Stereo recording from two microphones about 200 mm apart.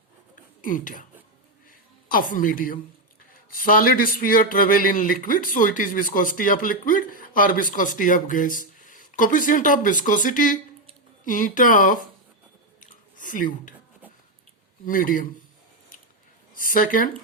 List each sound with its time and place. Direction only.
0.6 s speech: 40° left (ahead or behind)
2.0 s speech: 45° left (ahead or behind)
12.8 s chewing: 40° left (ahead or behind)
14.8 s speech: 45° left (ahead or behind)
16.6 s speech: 45° left (ahead or behind)